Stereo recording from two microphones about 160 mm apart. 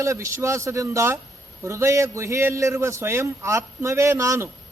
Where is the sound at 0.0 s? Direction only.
20° right (ahead or behind).